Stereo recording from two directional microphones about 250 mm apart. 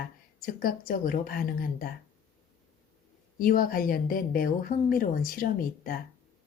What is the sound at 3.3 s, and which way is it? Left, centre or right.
A woman's voice, left.